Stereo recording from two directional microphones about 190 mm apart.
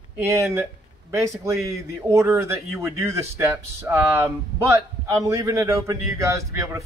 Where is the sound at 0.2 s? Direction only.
15° right (ahead or behind).